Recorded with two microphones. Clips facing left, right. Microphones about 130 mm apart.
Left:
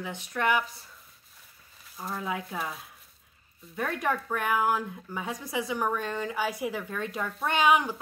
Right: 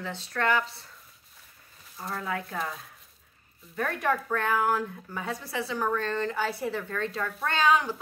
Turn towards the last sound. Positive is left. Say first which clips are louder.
# left 1 dB
turn(degrees=15)  # may be behind; listen again after turning